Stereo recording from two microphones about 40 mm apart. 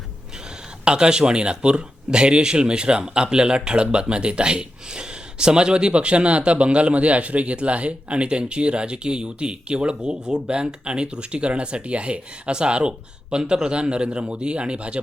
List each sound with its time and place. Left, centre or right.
0.9 s speech: right